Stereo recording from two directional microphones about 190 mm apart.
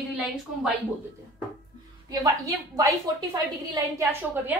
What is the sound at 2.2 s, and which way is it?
A woman's voice, 20° right (ahead or behind).